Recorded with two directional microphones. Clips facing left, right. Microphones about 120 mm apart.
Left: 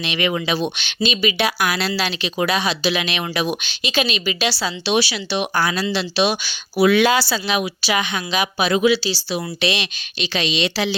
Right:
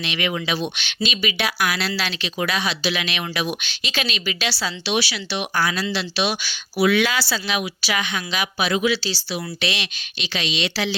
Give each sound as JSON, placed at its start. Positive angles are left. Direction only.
{"t": 0.0, "sound": "speech", "side_deg": 20}
{"t": 0.3, "sound": "speech", "side_deg": 35}
{"t": 1.9, "sound": "speech", "side_deg": 15}
{"t": 3.7, "sound": "speech", "side_deg": 15}
{"t": 6.8, "sound": "speech", "side_deg": 40}
{"t": 7.1, "sound": "speech", "side_deg": 20}
{"t": 9.0, "sound": "speech", "side_deg": 10}
{"t": 10.2, "sound": "speech", "side_deg": 30}